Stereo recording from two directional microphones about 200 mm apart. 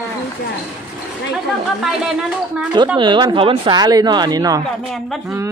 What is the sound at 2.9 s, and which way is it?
Speech, 25° right (ahead or behind).